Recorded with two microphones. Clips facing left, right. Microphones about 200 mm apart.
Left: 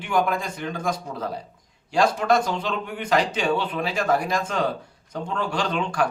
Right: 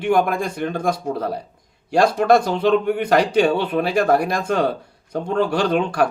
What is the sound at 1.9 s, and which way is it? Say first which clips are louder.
Speech: right 5 dB; 60° right (ahead or behind).